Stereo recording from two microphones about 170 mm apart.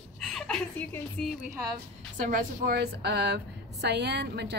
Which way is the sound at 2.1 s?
50° right (ahead or behind).